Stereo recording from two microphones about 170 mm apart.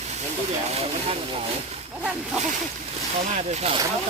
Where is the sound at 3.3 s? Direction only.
40° right (ahead or behind).